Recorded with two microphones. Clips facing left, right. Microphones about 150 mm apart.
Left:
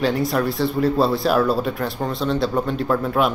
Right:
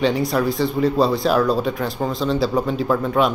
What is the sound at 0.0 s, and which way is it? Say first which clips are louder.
Speech: right 1 dB; centre (ahead or behind).